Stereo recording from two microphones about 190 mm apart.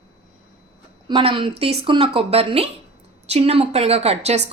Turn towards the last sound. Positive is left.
turn(degrees=-35)  # may be behind; listen again after turning